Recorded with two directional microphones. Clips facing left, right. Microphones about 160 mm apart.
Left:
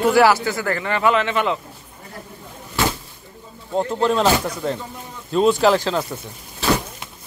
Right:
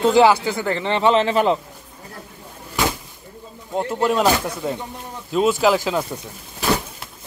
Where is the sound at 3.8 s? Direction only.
5° right (ahead or behind).